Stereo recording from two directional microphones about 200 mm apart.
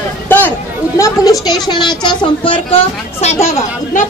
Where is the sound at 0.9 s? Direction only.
15° left (ahead or behind).